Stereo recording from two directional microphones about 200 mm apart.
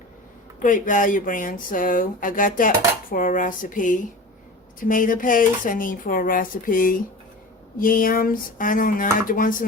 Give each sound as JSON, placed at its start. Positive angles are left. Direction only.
{"t": 0.6, "sound": "speech", "side_deg": 40}